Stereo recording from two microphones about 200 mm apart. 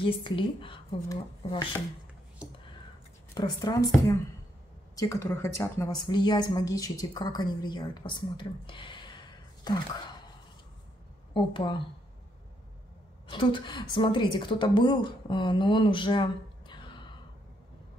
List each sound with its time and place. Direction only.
0.0 s a woman's voice: 25° left (ahead or behind)
3.3 s a woman's voice: 20° left (ahead or behind)
4.9 s a woman's voice: 15° left (ahead or behind)
11.3 s a woman's voice: 25° left (ahead or behind)
13.3 s a woman's voice: 25° left (ahead or behind)